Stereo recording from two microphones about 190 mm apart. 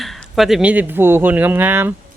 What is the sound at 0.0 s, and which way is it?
Speech, centre (ahead or behind).